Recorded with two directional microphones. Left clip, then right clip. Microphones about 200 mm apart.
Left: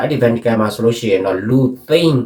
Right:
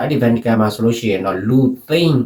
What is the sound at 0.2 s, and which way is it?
Speech, 5° left (ahead or behind).